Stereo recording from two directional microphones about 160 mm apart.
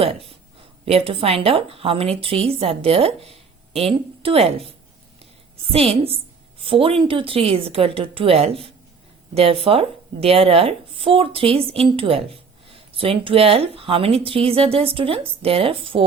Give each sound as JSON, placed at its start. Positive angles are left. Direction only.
{"t": 0.0, "sound": "a woman's voice", "side_deg": -35}